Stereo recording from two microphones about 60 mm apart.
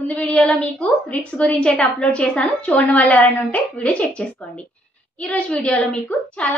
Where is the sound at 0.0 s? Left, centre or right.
Left.